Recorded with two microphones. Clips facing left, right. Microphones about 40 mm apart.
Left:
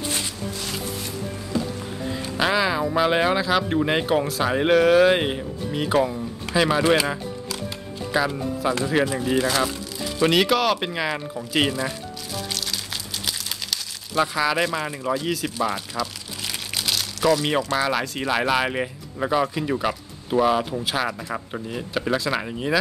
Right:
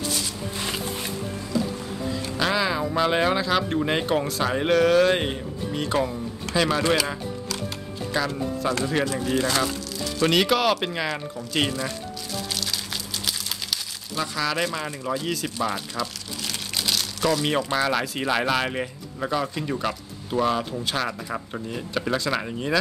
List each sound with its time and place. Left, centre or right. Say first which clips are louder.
0.6 s a sound: right 4 dB; right
2.3 s speech: left 3 dB; centre
12.5 s crumpling: even; centre
14.2 s speech: left 3 dB; centre
15.1 s crumpling: left 2 dB; centre
17.7 s speech: even; centre